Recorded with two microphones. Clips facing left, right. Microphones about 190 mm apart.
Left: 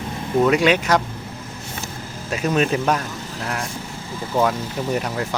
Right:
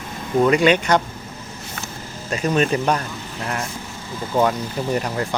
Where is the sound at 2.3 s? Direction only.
5° left (ahead or behind).